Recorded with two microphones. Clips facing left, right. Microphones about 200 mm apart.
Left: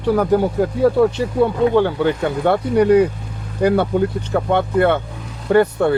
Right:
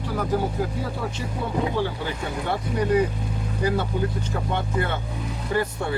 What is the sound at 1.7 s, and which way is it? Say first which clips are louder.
Speech: left 11 dB; 60° left (ahead or behind).